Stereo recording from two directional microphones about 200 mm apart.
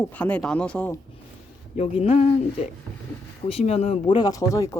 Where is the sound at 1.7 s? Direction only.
30° left (ahead or behind).